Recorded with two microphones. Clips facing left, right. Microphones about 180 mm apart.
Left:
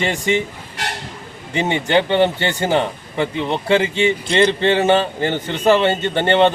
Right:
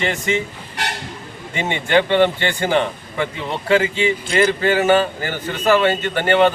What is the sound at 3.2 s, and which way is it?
A man's voice, 25° left (ahead or behind).